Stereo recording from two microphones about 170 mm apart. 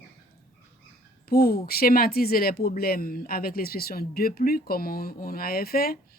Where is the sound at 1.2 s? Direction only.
65° left (ahead or behind).